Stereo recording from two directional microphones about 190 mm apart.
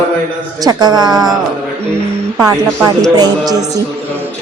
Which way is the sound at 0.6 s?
20° right (ahead or behind).